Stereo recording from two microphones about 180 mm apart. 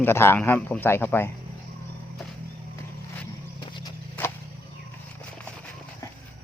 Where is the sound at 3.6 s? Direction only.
25° left (ahead or behind).